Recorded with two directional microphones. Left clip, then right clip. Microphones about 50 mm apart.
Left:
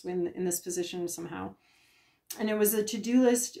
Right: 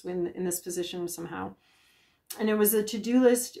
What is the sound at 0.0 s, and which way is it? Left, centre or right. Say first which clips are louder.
Speech: even; right.